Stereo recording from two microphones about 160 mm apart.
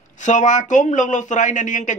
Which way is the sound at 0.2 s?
50° left (ahead or behind).